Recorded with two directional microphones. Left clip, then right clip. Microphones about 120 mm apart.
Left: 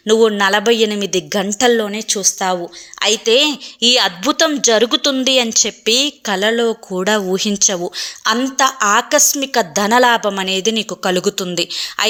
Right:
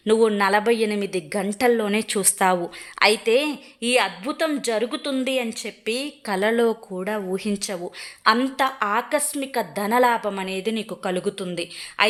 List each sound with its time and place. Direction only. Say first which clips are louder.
0.1 s a woman's voice: left 6 dB; 15° left (ahead or behind)
1.9 s a woman's voice: left 3 dB; 5° right (ahead or behind)
3.0 s speech: left 3 dB; 10° left (ahead or behind)
3.3 s a woman's voice: left 8 dB; 25° left (ahead or behind)
4.2 s speech: left 10 dB; 40° left (ahead or behind)
6.3 s speech: left 4 dB; 15° left (ahead or behind)
6.9 s a woman's voice: left 10 dB; 35° left (ahead or behind)